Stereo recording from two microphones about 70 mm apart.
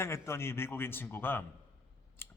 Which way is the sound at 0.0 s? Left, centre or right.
Left.